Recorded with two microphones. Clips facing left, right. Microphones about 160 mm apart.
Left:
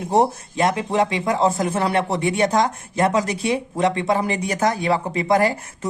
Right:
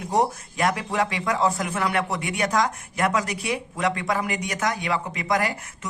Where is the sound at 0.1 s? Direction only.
25° left (ahead or behind).